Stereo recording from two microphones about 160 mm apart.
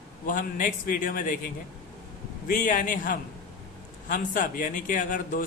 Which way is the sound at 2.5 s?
55° left (ahead or behind).